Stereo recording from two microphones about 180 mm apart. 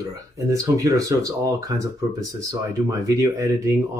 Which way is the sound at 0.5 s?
20° right (ahead or behind).